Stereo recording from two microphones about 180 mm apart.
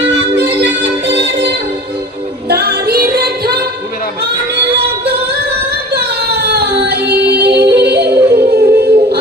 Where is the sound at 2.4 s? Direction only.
60° right (ahead or behind).